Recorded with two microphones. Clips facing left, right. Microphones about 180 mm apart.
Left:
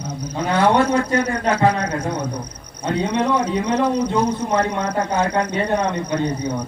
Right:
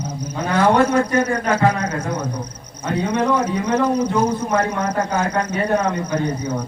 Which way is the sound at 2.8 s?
30° left (ahead or behind).